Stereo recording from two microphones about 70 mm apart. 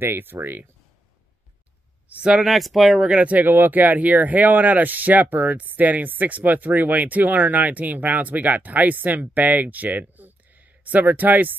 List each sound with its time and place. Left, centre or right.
0.0 s speech: right
2.3 s speech: centre
3.1 s speech: centre